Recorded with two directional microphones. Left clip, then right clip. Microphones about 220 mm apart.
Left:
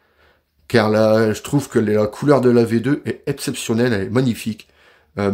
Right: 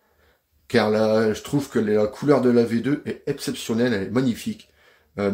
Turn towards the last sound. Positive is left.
turn(degrees=50)  # may be behind; listen again after turning